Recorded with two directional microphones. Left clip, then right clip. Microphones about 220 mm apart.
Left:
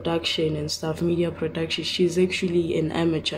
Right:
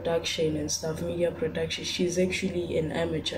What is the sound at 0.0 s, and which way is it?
Speech, 50° left (ahead or behind).